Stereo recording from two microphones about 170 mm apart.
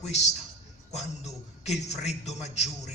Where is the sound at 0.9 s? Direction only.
40° left (ahead or behind).